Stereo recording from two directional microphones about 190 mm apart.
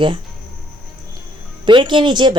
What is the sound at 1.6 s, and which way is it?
Speech, 25° right (ahead or behind).